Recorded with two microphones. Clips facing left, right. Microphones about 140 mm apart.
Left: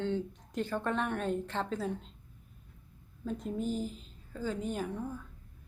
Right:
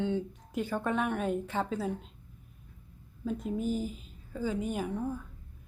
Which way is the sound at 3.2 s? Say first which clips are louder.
Right 2 dB; 5° right (ahead or behind).